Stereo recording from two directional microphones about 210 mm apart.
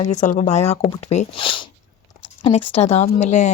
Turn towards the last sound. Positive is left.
turn(degrees=35)  # may be behind; listen again after turning